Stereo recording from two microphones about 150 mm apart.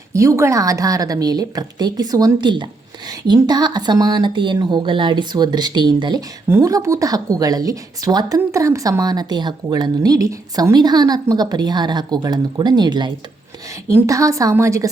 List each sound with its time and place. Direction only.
0.1 s a woman's voice: 20° right (ahead or behind)